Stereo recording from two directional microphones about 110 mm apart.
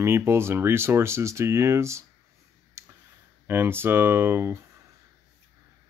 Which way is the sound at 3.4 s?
20° right (ahead or behind).